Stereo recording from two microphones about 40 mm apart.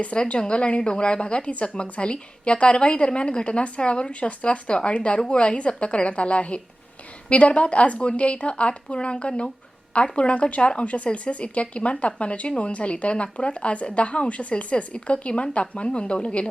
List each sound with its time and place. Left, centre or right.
0.0 s a woman's voice: left